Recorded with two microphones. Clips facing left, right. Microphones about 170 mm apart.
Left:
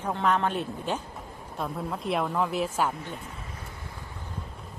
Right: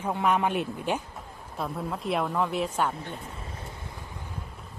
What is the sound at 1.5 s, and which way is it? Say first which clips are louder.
Speech: even; centre (ahead or behind).